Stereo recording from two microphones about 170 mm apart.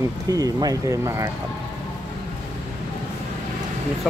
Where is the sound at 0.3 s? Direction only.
20° right (ahead or behind).